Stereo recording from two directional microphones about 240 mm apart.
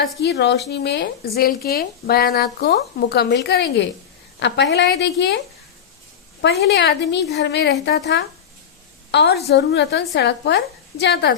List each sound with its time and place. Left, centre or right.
0.2 s a woman's voice: left
6.4 s a woman's voice: left